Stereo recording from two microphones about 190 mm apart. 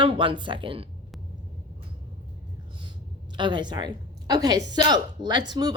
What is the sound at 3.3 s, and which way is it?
Speech, 25° right (ahead or behind).